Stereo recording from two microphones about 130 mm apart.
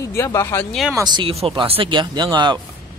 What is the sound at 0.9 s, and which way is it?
Speech, 35° right (ahead or behind).